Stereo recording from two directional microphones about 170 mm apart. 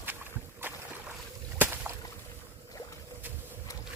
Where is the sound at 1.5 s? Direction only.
10° right (ahead or behind).